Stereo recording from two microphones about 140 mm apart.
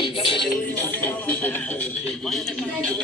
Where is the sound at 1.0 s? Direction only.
10° left (ahead or behind).